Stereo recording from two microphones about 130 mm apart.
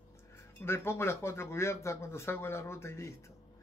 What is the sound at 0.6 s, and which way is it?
Speech, 20° left (ahead or behind).